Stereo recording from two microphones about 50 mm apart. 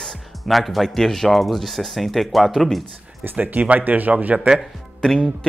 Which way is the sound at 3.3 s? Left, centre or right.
Right.